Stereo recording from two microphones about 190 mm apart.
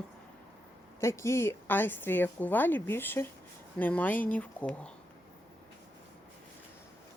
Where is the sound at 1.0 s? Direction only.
15° left (ahead or behind).